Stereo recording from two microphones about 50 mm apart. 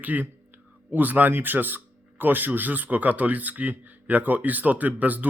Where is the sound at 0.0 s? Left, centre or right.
Right.